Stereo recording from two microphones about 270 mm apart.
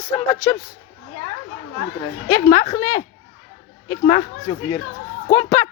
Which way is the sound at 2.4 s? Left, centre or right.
Centre.